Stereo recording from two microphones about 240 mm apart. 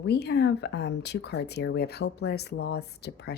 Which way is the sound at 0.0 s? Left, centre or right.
Left.